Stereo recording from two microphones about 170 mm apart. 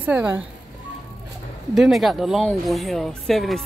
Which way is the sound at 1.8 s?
Centre (ahead or behind).